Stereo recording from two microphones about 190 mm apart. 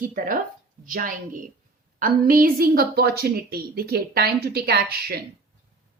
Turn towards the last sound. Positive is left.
turn(degrees=-55)  # may be behind; listen again after turning